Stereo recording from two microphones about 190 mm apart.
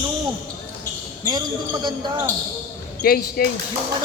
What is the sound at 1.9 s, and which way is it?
Speech, 25° right (ahead or behind).